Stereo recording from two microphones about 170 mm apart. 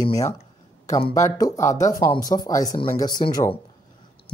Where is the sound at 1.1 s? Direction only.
20° left (ahead or behind).